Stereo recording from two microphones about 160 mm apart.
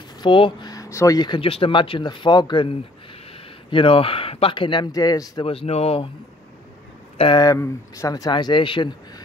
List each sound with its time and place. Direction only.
0.2 s speech: 30° left (ahead or behind)
5.4 s speech: 35° left (ahead or behind)
7.2 s speech: 30° left (ahead or behind)